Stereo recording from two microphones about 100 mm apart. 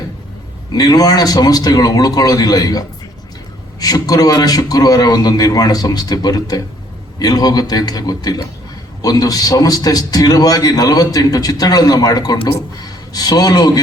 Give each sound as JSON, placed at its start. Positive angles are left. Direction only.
{"t": 0.7, "sound": "a man's voice", "side_deg": 40}